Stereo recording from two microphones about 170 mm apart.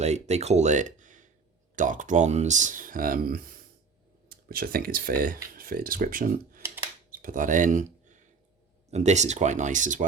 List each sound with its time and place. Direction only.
0.0 s speech: 40° right (ahead or behind)